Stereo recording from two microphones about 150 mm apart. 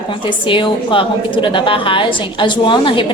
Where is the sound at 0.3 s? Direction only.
35° left (ahead or behind).